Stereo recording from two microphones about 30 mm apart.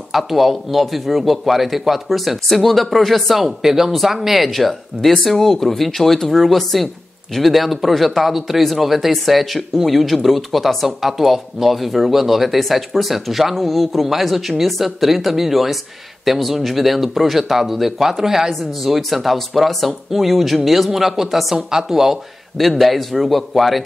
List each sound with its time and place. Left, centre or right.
0.1 s speech: centre
4.5 s speech: centre
18.6 s speech: centre
22.6 s speech: centre